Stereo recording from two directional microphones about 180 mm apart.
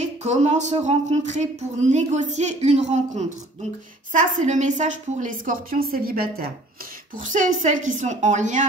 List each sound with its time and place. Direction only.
0.0 s a woman's voice: 40° right (ahead or behind); by 6.5 s 55° right (ahead or behind)
7.2 s a woman's voice: 45° right (ahead or behind)